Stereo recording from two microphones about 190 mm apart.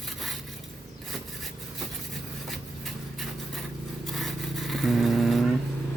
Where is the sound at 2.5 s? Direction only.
Centre (ahead or behind).